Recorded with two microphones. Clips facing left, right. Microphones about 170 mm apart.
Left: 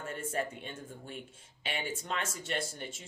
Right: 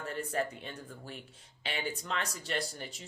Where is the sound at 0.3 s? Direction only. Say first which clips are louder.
Left 1 dB; 25° left (ahead or behind).